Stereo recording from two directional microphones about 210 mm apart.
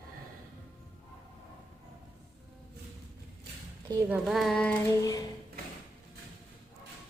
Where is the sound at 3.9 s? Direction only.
15° right (ahead or behind).